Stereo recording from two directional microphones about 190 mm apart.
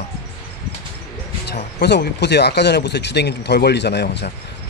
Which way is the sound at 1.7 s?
60° left (ahead or behind).